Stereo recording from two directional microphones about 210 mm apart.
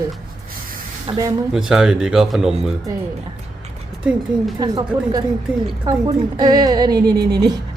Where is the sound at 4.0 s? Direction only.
5° right (ahead or behind).